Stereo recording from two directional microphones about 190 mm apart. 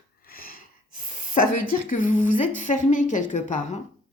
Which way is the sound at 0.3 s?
50° left (ahead or behind).